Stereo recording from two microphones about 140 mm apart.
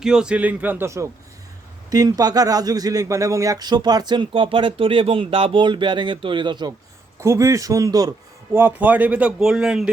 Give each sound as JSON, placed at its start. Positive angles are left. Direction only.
{"t": 0.0, "sound": "speech", "side_deg": -5}
{"t": 7.2, "sound": "a man's voice", "side_deg": -20}
{"t": 8.5, "sound": "speech", "side_deg": -15}